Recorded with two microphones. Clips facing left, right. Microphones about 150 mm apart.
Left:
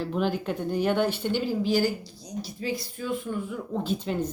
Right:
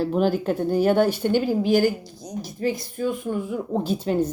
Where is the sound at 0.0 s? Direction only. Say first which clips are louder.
Right 6 dB; 40° right (ahead or behind).